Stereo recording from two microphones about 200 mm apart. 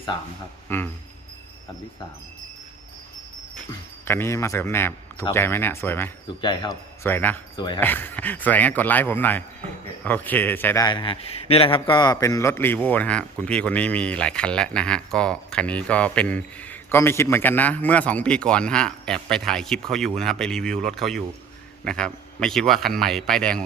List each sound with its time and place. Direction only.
0.1 s speech: 20° left (ahead or behind)
0.7 s a man's voice: 10° left (ahead or behind)
4.0 s a man's voice: 10° left (ahead or behind)
6.4 s speech: 25° left (ahead or behind)
7.0 s a man's voice: 10° left (ahead or behind)
7.5 s speech: 20° left (ahead or behind)
7.8 s a man's voice: 10° left (ahead or behind)
10.8 s a man's voice: 25° left (ahead or behind); by 23.6 s 5° left (ahead or behind)